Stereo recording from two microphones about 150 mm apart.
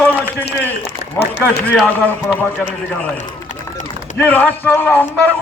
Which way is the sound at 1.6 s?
10° left (ahead or behind).